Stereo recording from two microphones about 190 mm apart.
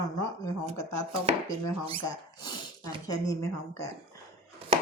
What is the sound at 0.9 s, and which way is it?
Chopping, 30° right (ahead or behind).